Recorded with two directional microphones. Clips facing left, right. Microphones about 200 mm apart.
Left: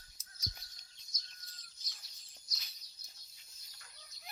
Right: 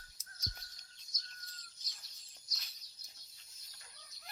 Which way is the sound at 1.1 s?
50° right (ahead or behind).